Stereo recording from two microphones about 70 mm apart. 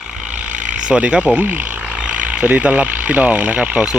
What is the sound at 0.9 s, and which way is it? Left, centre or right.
Speech, centre.